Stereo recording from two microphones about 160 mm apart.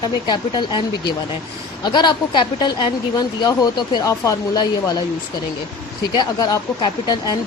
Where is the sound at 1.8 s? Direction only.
30° left (ahead or behind).